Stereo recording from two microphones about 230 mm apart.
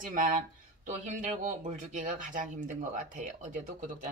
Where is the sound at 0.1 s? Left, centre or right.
Right.